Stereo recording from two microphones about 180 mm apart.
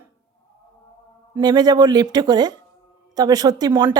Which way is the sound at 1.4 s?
20° right (ahead or behind).